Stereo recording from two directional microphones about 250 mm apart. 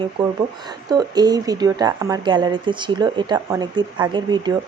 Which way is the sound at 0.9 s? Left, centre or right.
Centre.